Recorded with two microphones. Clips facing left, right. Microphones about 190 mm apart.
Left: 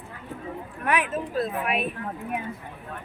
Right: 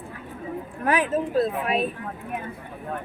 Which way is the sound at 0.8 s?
30° right (ahead or behind).